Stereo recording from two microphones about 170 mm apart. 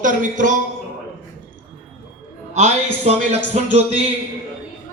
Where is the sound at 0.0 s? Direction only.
50° right (ahead or behind).